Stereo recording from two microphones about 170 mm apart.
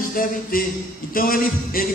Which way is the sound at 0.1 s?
55° left (ahead or behind).